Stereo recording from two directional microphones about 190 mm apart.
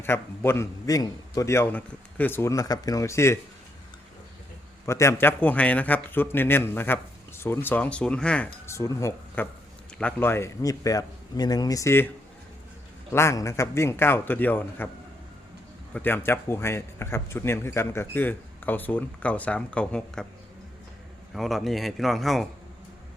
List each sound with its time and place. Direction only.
0.0 s a man's voice: 10° left (ahead or behind)
4.9 s a man's voice: 15° left (ahead or behind)
13.1 s a man's voice: 15° left (ahead or behind)
16.0 s a man's voice: 10° left (ahead or behind)
21.3 s a man's voice: centre (ahead or behind)